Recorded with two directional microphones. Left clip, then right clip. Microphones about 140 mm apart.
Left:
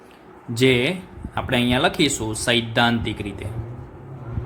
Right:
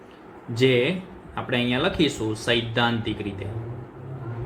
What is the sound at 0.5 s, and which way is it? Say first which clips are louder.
Speech: left 2 dB; 60° left (ahead or behind).